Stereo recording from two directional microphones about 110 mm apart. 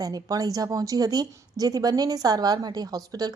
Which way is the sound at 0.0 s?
35° right (ahead or behind).